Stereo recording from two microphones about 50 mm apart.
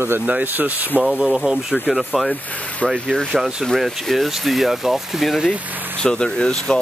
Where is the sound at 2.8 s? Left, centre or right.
Centre.